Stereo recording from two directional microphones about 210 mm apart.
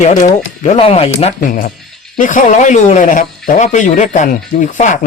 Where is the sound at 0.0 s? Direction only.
35° left (ahead or behind).